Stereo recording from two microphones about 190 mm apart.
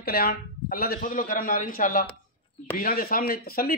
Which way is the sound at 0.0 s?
55° left (ahead or behind).